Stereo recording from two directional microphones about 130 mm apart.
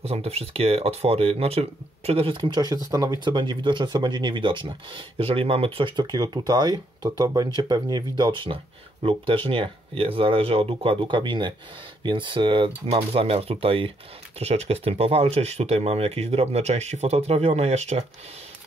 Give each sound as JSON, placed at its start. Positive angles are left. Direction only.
{"t": 0.0, "sound": "speech", "side_deg": -50}
{"t": 12.8, "sound": "speech", "side_deg": -50}